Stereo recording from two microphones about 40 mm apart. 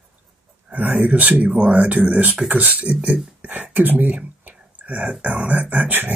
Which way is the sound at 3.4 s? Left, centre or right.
Right.